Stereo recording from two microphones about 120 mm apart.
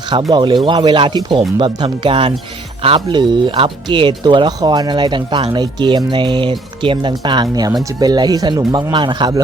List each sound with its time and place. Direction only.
0.3 s speech: 40° right (ahead or behind)